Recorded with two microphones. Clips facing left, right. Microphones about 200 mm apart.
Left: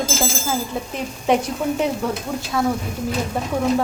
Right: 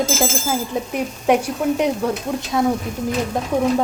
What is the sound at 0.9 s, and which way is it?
A woman's voice, 10° right (ahead or behind).